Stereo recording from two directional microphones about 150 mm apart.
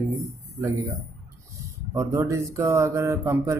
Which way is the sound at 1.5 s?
20° right (ahead or behind).